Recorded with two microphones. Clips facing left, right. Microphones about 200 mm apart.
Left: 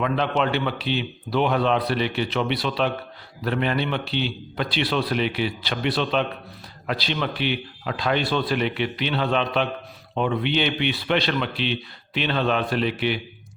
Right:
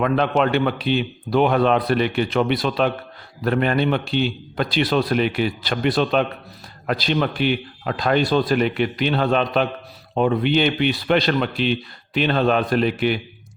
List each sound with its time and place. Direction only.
0.0 s speech: 50° right (ahead or behind)